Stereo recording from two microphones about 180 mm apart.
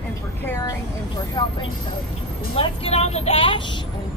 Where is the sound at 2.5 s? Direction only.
35° left (ahead or behind).